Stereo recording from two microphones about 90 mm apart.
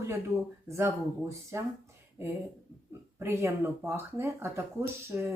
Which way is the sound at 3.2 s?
30° right (ahead or behind).